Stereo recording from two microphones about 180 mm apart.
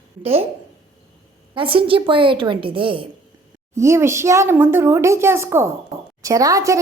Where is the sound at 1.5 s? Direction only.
30° right (ahead or behind).